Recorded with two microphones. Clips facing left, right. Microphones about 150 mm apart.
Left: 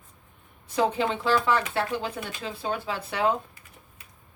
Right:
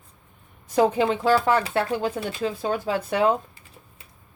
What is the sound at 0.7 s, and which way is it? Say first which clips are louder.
Speech: right 5 dB; 45° right (ahead or behind).